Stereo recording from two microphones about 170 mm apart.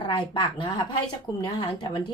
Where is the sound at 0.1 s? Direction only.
30° left (ahead or behind).